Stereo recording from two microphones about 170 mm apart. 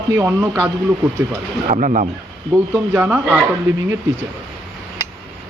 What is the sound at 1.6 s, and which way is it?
Speech, 45° right (ahead or behind).